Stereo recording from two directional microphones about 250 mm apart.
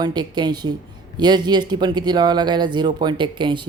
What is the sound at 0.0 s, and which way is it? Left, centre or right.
Speech, centre.